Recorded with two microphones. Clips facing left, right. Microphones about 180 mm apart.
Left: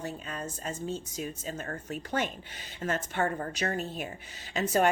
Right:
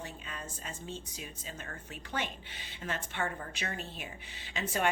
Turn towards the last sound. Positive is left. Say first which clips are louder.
# left 8 dB
turn(degrees=40)  # may be behind; listen again after turning